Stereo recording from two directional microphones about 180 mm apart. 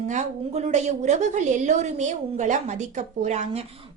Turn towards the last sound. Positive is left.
turn(degrees=-40)  # may be behind; listen again after turning